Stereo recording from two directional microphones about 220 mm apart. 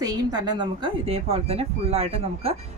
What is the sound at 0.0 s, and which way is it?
Speech, 15° right (ahead or behind).